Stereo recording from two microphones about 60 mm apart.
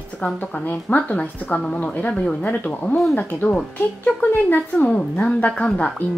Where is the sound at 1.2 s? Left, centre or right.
Centre.